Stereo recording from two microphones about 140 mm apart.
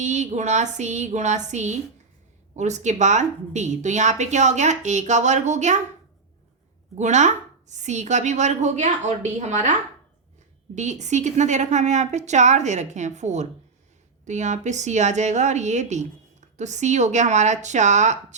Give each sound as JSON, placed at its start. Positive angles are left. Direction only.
{"t": 0.0, "sound": "a woman's voice", "side_deg": -55}
{"t": 6.9, "sound": "a woman's voice", "side_deg": -55}
{"t": 10.8, "sound": "a woman's voice", "side_deg": -55}